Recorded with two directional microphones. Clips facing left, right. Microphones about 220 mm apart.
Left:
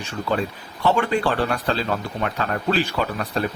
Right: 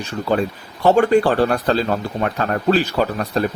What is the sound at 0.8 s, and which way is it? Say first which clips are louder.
Speech: right 7 dB; 45° right (ahead or behind).